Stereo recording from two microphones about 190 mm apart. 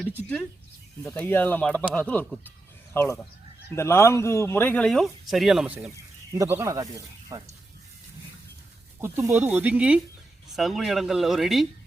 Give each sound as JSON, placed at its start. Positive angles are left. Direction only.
{"t": 1.0, "sound": "speech", "side_deg": 10}
{"t": 9.0, "sound": "speech", "side_deg": -10}